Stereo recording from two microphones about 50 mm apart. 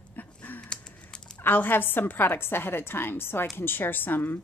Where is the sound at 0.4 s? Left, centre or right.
Left.